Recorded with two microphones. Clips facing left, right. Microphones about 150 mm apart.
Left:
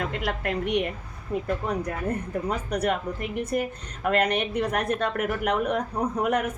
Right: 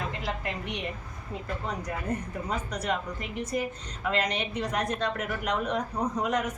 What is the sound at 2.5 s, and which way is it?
A woman's voice, 60° left (ahead or behind).